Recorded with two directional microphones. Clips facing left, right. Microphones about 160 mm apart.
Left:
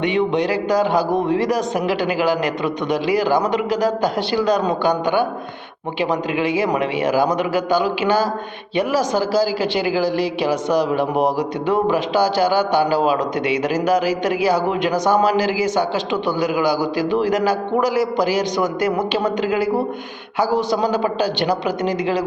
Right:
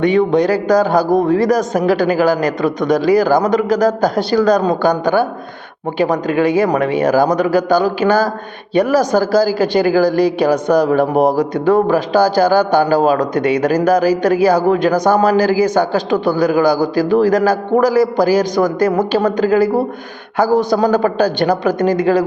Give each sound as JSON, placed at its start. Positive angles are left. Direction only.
{"t": 0.0, "sound": "a man's voice", "side_deg": -40}